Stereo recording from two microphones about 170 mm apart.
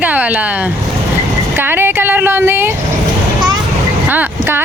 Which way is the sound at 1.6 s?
10° right (ahead or behind).